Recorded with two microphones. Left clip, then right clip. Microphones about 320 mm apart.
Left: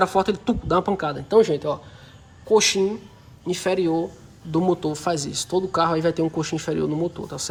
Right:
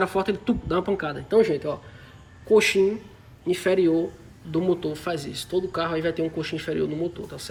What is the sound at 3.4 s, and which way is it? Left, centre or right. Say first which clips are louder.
Speech: right 1 dB; centre.